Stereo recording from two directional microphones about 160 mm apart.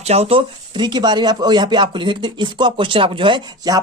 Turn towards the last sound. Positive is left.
turn(degrees=-25)  # may be behind; listen again after turning